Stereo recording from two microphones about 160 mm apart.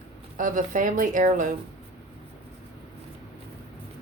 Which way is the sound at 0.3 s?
55° right (ahead or behind).